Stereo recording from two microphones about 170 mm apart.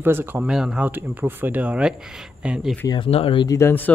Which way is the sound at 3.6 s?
15° left (ahead or behind).